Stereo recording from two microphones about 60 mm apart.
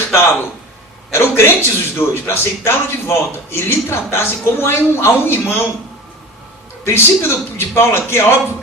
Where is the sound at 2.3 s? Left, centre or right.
Left.